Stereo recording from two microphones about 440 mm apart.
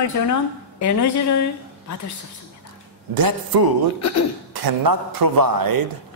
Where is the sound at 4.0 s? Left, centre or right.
Left.